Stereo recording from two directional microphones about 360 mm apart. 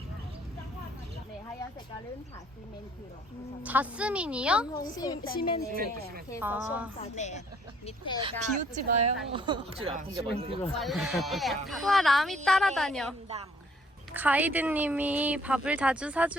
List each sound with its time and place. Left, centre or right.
3.6 s a woman's voice: centre
4.8 s a woman's voice: centre
5.2 s a woman's voice: left
5.7 s speech: right
6.4 s a woman's voice: centre
7.0 s a woman's voice: centre
8.2 s speech: centre
10.6 s a woman's voice: centre